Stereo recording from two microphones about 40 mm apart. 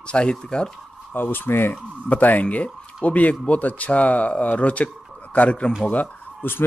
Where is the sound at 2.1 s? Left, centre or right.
Left.